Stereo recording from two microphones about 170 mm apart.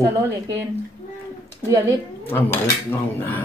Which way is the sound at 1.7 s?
20° right (ahead or behind).